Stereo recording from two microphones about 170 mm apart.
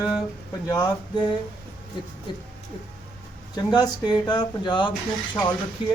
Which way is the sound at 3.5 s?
25° left (ahead or behind).